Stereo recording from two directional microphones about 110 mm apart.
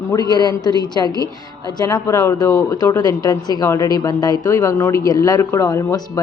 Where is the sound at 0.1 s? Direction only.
40° left (ahead or behind).